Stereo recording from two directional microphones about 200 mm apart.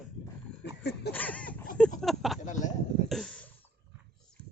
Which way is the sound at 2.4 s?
35° left (ahead or behind).